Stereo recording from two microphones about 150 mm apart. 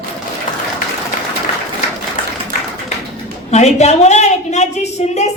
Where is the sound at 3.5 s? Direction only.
50° left (ahead or behind).